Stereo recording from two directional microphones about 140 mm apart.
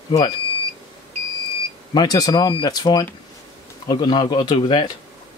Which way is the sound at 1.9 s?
30° left (ahead or behind).